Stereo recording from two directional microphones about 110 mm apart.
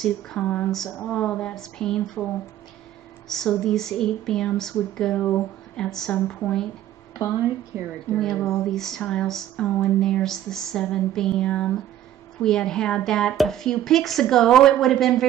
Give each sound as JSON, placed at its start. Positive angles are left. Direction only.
{"t": 0.0, "sound": "a woman's voice", "side_deg": 5}
{"t": 3.3, "sound": "a woman's voice", "side_deg": 5}
{"t": 7.7, "sound": "a woman's voice", "side_deg": -20}
{"t": 8.1, "sound": "speech", "side_deg": 0}